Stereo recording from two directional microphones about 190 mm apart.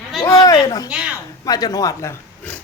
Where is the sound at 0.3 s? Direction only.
15° left (ahead or behind).